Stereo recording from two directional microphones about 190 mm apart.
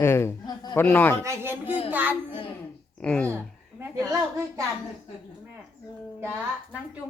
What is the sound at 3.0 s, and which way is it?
Speech, 5° left (ahead or behind).